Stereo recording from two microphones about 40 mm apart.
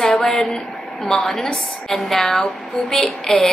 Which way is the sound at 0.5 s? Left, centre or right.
Centre.